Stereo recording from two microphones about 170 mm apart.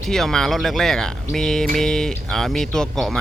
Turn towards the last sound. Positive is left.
turn(degrees=5)  # may be behind; listen again after turning